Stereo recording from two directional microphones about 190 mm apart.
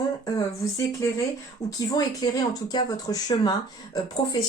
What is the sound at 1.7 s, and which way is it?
Speech, 20° left (ahead or behind).